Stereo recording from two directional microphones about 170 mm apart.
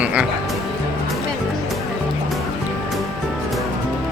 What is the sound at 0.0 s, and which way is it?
Music, 5° right (ahead or behind).